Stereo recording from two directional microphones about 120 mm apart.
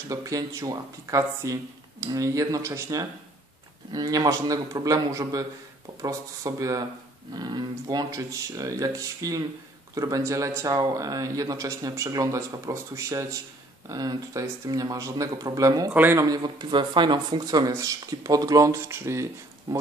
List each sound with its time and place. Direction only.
0.1 s a man's voice: 30° right (ahead or behind)
15.9 s a man's voice: 15° right (ahead or behind)
16.3 s speech: 35° right (ahead or behind); by 19.2 s 20° right (ahead or behind)